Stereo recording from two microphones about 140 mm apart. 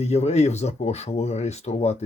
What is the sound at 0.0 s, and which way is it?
Speech, 50° left (ahead or behind).